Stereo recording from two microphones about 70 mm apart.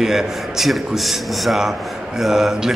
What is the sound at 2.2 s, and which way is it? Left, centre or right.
Mantra, centre.